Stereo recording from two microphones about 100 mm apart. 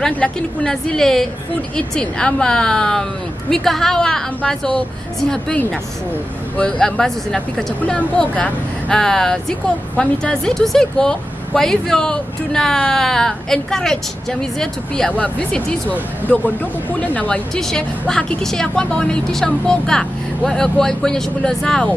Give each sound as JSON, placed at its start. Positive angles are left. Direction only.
{"t": 0.0, "sound": "speech", "side_deg": 10}
{"t": 6.5, "sound": "speech", "side_deg": 10}
{"t": 17.6, "sound": "speech", "side_deg": 5}